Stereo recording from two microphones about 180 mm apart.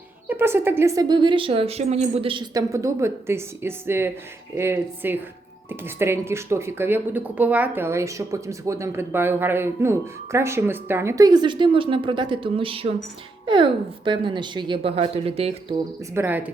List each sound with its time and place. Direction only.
0.3 s speech: 15° right (ahead or behind); by 15.5 s 35° right (ahead or behind)
16.1 s speech: 10° right (ahead or behind)